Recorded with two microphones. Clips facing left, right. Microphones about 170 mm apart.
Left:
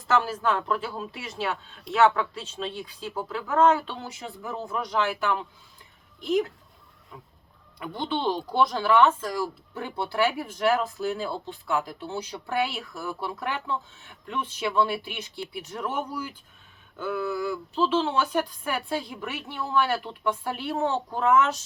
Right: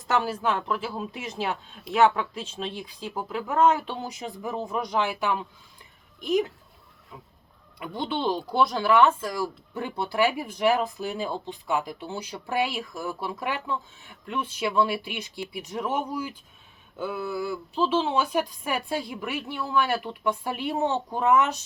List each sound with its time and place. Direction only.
0.1 s speech: 10° right (ahead or behind)
7.8 s speech: 10° right (ahead or behind)